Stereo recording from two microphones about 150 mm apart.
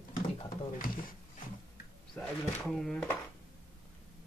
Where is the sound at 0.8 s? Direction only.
70° left (ahead or behind).